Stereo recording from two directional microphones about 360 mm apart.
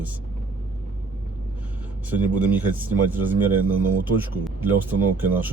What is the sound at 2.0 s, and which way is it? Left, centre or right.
Speech, centre.